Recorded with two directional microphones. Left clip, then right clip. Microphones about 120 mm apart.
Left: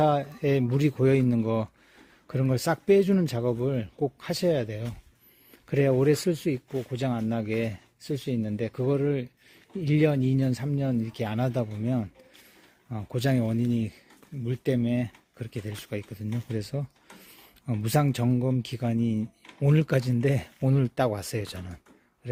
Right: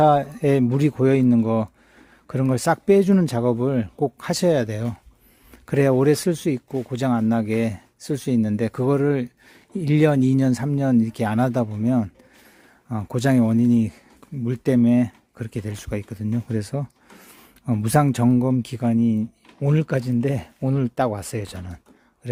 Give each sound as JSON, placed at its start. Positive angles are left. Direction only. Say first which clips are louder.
{"t": 0.0, "sound": "speech", "louder": "right 7 dB", "side_deg": -35}
{"t": 6.9, "sound": "speech", "louder": "right 9 dB", "side_deg": -45}
{"t": 8.1, "sound": "speech", "louder": "right 7 dB", "side_deg": -55}
{"t": 19.6, "sound": "speech", "louder": "right 3 dB", "side_deg": -15}